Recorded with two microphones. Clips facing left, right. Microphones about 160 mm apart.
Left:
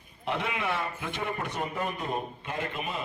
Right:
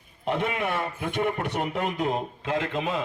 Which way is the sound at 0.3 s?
45° right (ahead or behind).